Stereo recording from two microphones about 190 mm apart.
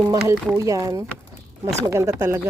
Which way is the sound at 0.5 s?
15° right (ahead or behind).